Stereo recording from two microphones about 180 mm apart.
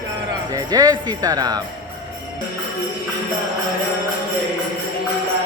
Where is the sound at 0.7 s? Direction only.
25° right (ahead or behind).